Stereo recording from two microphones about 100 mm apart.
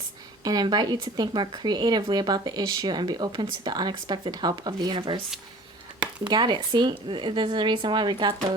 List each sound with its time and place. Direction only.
0.4 s speech: 45° right (ahead or behind)